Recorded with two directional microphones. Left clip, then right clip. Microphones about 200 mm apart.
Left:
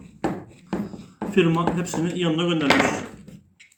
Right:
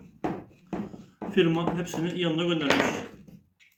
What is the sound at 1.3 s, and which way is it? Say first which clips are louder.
A man's voice: left 4 dB; 35° left (ahead or behind).